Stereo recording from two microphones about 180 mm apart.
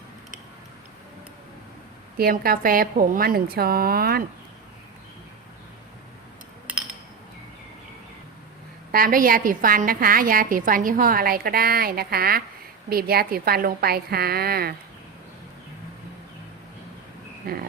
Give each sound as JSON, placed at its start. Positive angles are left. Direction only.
{"t": 2.1, "sound": "a woman's voice", "side_deg": -55}
{"t": 8.9, "sound": "a woman's voice", "side_deg": -50}
{"t": 17.4, "sound": "a sound", "side_deg": -55}